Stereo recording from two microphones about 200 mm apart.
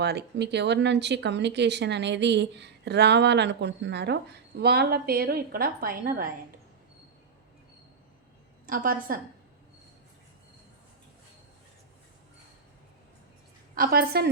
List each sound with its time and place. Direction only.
0.0 s speech: 55° right (ahead or behind)
8.6 s a woman's voice: 45° right (ahead or behind)
13.7 s a woman's voice: 50° right (ahead or behind)